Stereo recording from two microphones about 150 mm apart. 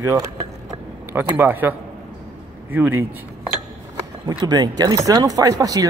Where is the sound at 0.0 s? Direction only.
20° right (ahead or behind).